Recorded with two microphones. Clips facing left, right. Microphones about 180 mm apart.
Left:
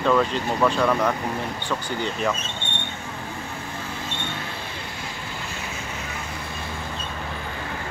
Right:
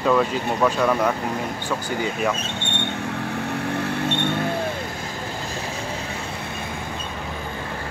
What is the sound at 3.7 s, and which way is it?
Vehicle, 65° right (ahead or behind).